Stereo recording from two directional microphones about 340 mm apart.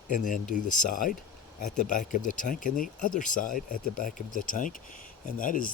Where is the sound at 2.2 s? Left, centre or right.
Left.